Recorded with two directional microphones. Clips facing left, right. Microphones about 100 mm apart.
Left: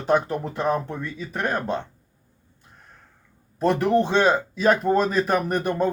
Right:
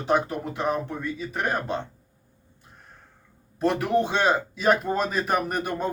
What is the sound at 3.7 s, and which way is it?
Speech, 5° right (ahead or behind).